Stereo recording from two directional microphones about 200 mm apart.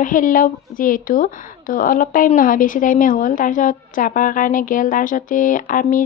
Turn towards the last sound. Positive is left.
turn(degrees=40)  # may be behind; listen again after turning